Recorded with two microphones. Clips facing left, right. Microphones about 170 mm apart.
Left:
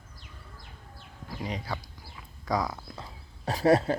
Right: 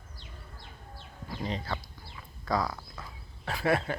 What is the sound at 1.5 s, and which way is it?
Speech, 10° left (ahead or behind).